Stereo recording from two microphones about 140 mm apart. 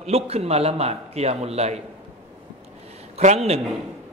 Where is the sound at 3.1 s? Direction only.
50° right (ahead or behind).